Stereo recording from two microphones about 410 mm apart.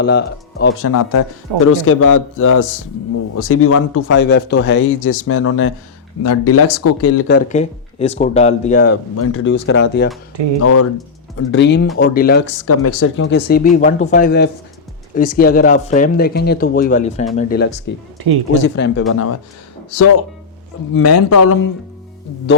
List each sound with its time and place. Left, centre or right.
0.0 s a man's voice: left
9.1 s a man's voice: left